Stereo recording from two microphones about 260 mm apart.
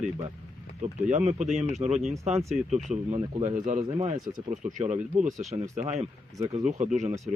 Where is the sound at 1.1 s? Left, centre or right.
Right.